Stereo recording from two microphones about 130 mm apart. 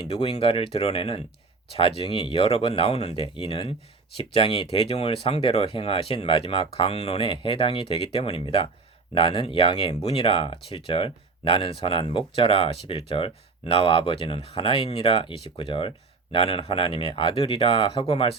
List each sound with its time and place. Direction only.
0.1 s speech: 50° left (ahead or behind)